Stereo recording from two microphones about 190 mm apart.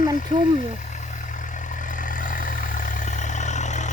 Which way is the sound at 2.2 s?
45° left (ahead or behind).